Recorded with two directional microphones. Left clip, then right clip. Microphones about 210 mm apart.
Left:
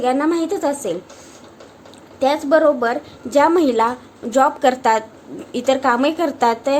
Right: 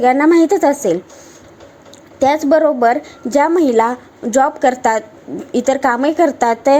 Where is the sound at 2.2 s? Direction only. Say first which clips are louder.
Right 3 dB; 25° right (ahead or behind).